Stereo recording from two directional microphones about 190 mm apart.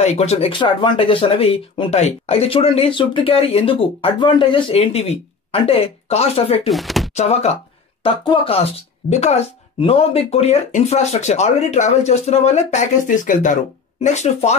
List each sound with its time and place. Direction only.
0.0 s speech: 35° left (ahead or behind)
6.7 s speech: centre (ahead or behind)
7.2 s speech: 35° left (ahead or behind)